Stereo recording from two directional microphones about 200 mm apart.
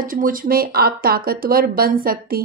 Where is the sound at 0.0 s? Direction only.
45° right (ahead or behind).